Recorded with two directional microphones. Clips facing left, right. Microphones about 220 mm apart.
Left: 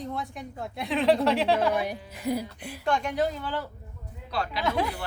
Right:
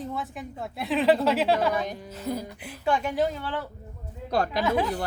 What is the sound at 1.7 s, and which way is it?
Speech, 10° left (ahead or behind).